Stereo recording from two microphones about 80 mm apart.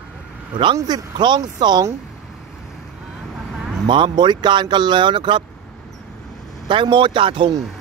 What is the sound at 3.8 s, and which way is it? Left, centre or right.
Speech, right.